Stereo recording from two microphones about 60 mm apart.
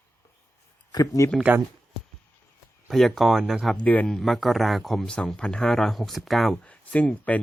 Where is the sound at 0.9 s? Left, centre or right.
Left.